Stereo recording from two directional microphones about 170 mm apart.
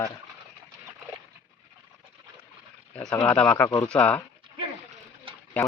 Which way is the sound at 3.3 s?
10° left (ahead or behind).